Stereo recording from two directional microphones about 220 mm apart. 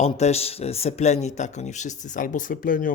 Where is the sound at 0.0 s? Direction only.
30° left (ahead or behind).